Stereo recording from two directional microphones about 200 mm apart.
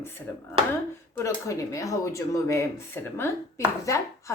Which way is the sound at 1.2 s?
15° left (ahead or behind).